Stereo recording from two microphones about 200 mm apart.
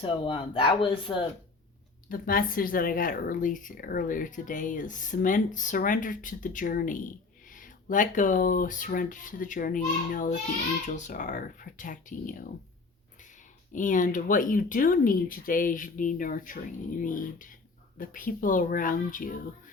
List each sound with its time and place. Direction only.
0.0 s speech: 25° left (ahead or behind)
2.0 s speech: 45° left (ahead or behind)
13.7 s speech: 40° left (ahead or behind)